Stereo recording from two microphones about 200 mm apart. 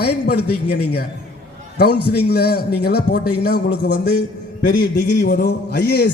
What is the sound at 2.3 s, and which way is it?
A man's voice, 50° left (ahead or behind).